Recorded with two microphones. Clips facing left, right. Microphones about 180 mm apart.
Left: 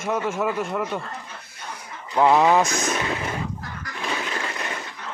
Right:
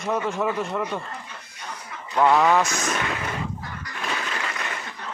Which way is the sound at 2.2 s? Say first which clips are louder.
Left 1 dB; 20° left (ahead or behind).